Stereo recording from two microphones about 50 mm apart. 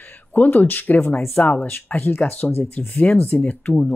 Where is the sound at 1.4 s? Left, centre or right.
Left.